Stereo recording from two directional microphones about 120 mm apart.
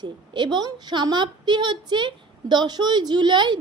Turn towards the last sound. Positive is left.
turn(degrees=-40)  # may be behind; listen again after turning